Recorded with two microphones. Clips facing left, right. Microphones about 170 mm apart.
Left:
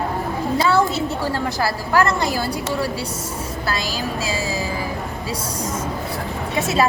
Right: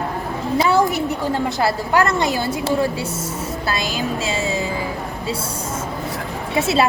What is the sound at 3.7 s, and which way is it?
Speech, 25° right (ahead or behind).